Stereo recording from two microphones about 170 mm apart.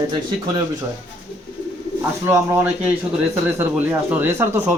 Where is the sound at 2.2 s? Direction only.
15° right (ahead or behind).